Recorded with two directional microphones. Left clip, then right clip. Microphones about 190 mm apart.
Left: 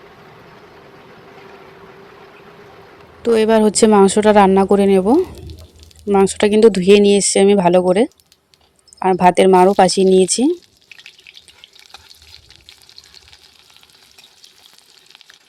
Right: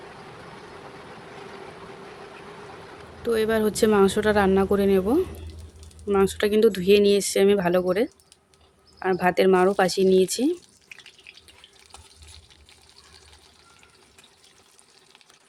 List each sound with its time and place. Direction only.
3.2 s speech: 35° left (ahead or behind)